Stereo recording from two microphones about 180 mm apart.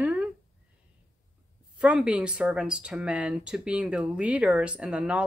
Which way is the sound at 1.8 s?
5° right (ahead or behind).